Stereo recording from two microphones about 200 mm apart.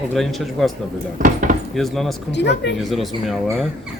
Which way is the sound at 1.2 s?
40° right (ahead or behind).